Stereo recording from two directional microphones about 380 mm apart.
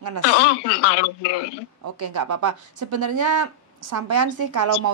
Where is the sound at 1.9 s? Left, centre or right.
Right.